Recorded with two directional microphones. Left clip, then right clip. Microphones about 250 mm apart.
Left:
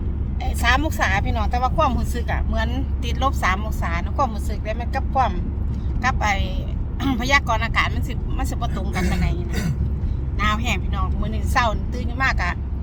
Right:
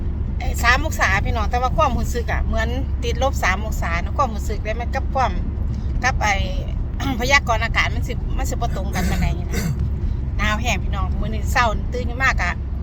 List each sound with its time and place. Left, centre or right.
0.4 s speech: centre
10.4 s speech: centre